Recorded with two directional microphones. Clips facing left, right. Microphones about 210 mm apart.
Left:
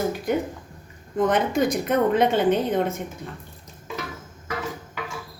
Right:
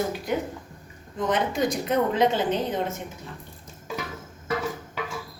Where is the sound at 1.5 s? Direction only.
55° left (ahead or behind).